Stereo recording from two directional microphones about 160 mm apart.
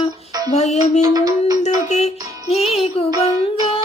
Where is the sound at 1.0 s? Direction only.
25° right (ahead or behind).